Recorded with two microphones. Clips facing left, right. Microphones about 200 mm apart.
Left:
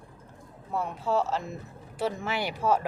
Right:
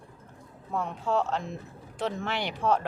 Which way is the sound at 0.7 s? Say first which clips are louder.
Even; 5° left (ahead or behind).